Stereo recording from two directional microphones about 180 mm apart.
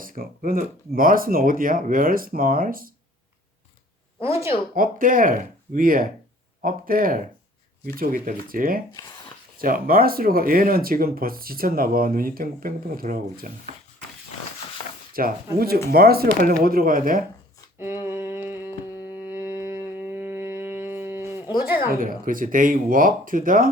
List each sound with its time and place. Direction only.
0.0 s speech: 50° right (ahead or behind)
4.2 s speech: 15° right (ahead or behind)
4.7 s speech: 50° right (ahead or behind)
8.9 s speech: 20° left (ahead or behind)
9.6 s speech: 50° right (ahead or behind)
15.2 s speech: 50° right (ahead or behind)
18.0 s a sound: 15° right (ahead or behind)
21.9 s speech: 50° right (ahead or behind)